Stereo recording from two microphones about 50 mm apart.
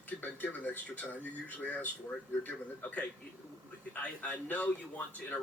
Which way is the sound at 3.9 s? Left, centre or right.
Left.